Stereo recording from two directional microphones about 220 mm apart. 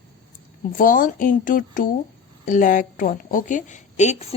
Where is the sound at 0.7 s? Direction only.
35° left (ahead or behind).